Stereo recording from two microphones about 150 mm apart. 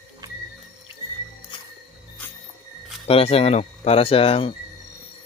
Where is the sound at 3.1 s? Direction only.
40° left (ahead or behind).